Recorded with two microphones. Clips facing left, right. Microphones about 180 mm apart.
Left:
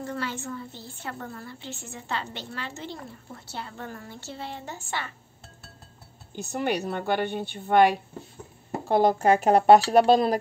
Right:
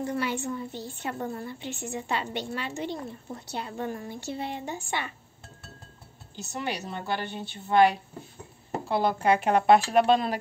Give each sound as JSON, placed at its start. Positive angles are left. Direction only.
{"t": 0.0, "sound": "a woman's voice", "side_deg": -15}
{"t": 6.3, "sound": "a woman's voice", "side_deg": 55}
{"t": 8.8, "sound": "speech", "side_deg": 45}